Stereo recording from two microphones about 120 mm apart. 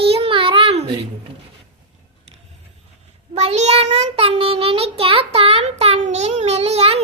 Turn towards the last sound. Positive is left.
turn(degrees=-60)  # may be behind; listen again after turning